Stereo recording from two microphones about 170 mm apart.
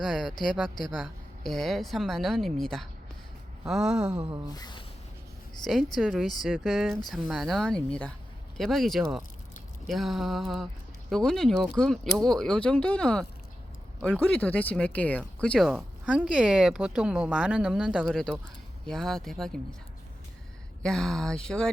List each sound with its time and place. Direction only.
0.0 s speech: centre (ahead or behind)
4.5 s speech: 25° left (ahead or behind)
6.0 s speech: centre (ahead or behind)
20.8 s speech: 5° left (ahead or behind)